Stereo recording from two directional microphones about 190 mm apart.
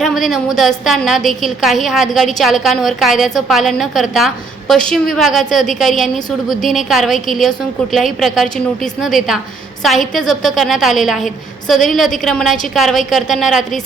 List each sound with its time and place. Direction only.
0.0 s a woman's voice: centre (ahead or behind)